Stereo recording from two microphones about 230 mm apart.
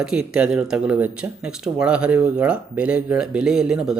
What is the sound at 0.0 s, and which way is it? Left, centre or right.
Speech, centre.